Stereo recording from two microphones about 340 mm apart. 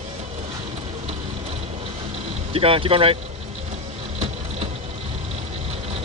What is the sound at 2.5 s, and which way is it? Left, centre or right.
Speech, centre.